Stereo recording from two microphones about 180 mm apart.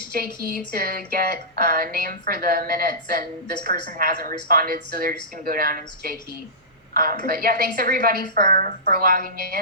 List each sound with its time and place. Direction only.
0.5 s a woman's voice: 55° right (ahead or behind)